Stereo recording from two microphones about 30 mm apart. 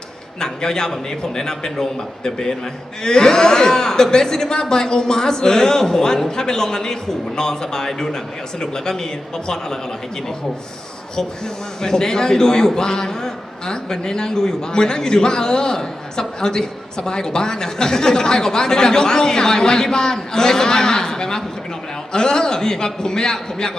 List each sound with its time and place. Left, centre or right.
0.3 s a man's voice: left
11.8 s a man's voice: centre